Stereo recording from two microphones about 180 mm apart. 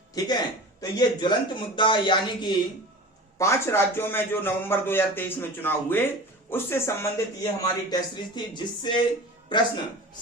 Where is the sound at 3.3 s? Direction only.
15° left (ahead or behind).